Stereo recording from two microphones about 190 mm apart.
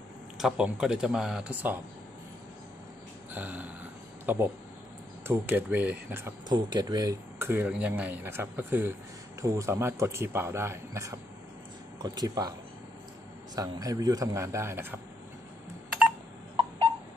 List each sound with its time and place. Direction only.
0.4 s speech: 5° right (ahead or behind)
3.3 s speech: 10° right (ahead or behind)
6.5 s speech: 20° right (ahead or behind)
13.6 s speech: 20° right (ahead or behind)